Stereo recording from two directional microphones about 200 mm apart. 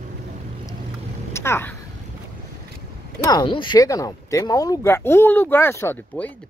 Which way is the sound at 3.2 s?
20° left (ahead or behind).